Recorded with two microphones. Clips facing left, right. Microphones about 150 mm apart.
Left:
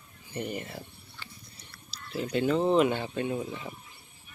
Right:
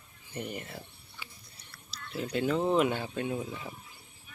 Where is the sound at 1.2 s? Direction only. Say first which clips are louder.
Left 1 dB; 10° right (ahead or behind).